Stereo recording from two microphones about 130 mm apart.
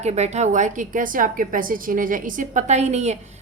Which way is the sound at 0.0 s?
60° right (ahead or behind).